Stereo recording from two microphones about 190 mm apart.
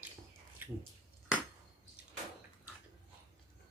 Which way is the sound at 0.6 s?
10° right (ahead or behind).